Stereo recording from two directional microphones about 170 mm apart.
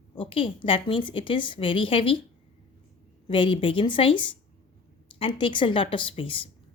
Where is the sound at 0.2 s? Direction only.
30° left (ahead or behind).